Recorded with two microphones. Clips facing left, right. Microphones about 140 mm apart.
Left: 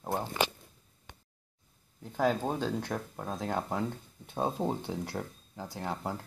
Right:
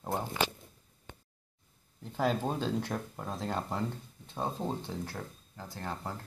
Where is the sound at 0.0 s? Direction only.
Centre (ahead or behind).